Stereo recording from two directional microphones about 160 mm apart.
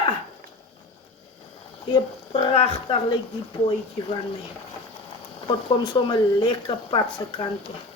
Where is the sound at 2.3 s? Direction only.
40° left (ahead or behind).